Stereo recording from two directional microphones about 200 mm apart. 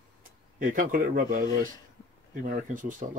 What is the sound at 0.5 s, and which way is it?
Speech, 45° right (ahead or behind).